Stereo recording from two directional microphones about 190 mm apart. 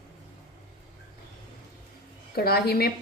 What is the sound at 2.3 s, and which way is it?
Speech, 55° left (ahead or behind).